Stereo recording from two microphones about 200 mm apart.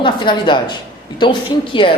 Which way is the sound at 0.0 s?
25° left (ahead or behind).